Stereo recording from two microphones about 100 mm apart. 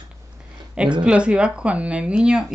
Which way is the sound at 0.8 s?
10° right (ahead or behind).